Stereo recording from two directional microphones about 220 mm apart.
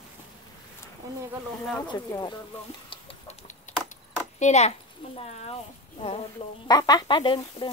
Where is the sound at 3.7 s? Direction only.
35° left (ahead or behind).